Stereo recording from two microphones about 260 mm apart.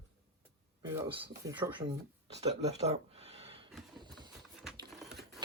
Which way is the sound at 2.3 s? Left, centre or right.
Right.